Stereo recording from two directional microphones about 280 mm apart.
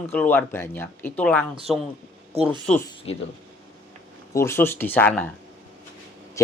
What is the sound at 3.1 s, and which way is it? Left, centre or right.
Speech, left.